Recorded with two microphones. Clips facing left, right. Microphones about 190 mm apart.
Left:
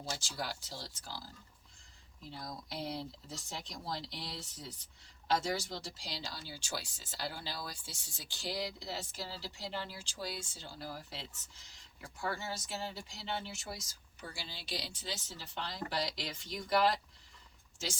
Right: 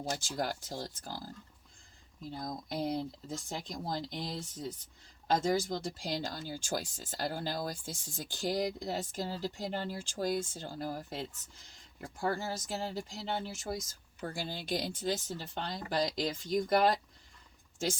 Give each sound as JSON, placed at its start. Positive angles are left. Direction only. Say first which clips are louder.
{"t": 0.2, "sound": "speech", "louder": "right 6 dB", "side_deg": -50}
{"t": 2.9, "sound": "speech", "louder": "right 6 dB", "side_deg": -50}